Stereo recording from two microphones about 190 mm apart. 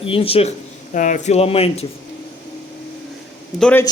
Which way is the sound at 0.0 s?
30° left (ahead or behind).